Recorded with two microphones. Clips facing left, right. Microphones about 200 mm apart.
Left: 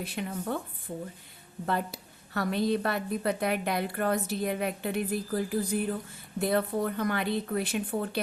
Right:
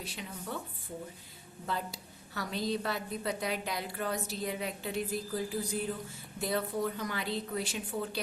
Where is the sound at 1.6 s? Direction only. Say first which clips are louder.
Left 6 dB; 60° left (ahead or behind).